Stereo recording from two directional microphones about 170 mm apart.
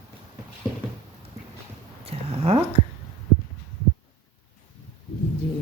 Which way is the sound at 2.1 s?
35° right (ahead or behind).